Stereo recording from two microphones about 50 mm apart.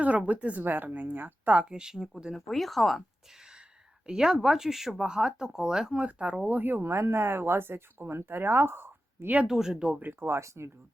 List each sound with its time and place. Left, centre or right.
0.0 s a woman's voice: right
1.7 s speech: centre
4.0 s speech: centre
6.0 s a woman's voice: right
6.4 s speech: right
6.8 s speech: right
9.5 s speech: centre
10.0 s speech: right